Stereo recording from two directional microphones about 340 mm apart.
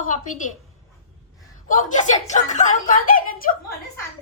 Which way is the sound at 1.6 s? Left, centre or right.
Left.